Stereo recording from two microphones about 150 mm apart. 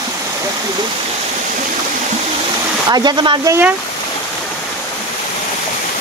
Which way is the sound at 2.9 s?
30° right (ahead or behind).